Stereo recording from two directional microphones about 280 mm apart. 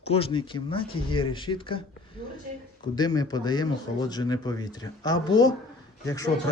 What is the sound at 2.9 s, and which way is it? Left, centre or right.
Speech, centre.